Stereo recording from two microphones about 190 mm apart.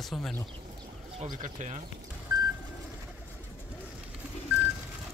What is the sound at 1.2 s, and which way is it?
Speech, 40° right (ahead or behind).